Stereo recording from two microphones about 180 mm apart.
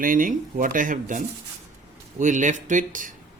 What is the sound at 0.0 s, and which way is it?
Speech, 50° right (ahead or behind).